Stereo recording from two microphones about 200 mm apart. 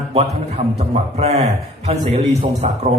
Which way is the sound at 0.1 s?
30° right (ahead or behind).